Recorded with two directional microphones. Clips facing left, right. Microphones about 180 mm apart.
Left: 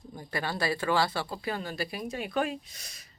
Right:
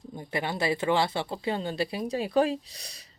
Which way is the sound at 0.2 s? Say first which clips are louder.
Right 2 dB; 20° right (ahead or behind).